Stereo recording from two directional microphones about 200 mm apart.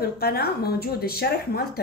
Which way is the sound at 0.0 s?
50° left (ahead or behind).